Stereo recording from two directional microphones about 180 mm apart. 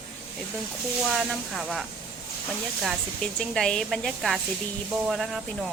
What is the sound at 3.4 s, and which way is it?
Speech, 5° left (ahead or behind).